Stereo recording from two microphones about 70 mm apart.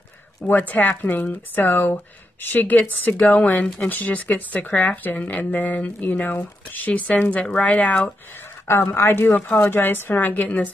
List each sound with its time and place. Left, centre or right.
0.5 s speech: left
8.9 s speech: left